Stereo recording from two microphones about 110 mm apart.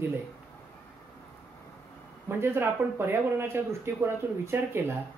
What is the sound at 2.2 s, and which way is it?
Speech, 20° right (ahead or behind).